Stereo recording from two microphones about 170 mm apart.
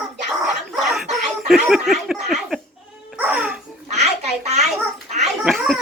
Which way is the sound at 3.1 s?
10° right (ahead or behind).